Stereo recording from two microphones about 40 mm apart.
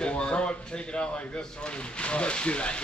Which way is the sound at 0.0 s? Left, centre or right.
Left.